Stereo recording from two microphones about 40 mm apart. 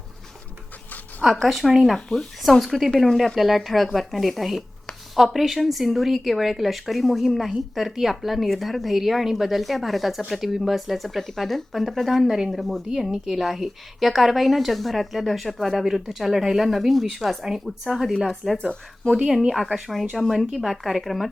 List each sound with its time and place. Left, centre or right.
1.2 s a woman's voice: centre
18.4 s speech: centre
19.3 s a woman's voice: centre